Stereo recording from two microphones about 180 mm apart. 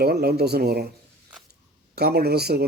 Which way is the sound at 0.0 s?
60° right (ahead or behind).